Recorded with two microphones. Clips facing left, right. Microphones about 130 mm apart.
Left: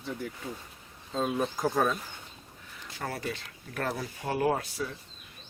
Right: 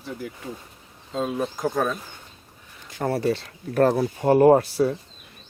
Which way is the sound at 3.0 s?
30° right (ahead or behind).